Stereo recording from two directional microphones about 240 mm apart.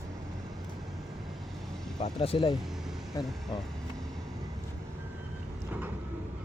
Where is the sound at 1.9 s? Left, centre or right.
Left.